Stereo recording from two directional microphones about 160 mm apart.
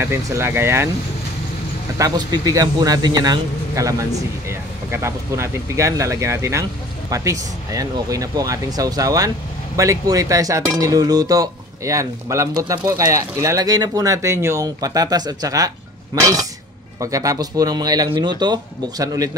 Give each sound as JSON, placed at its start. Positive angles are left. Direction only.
{"t": 0.0, "sound": "speech", "side_deg": -15}
{"t": 2.0, "sound": "cutlery", "side_deg": -25}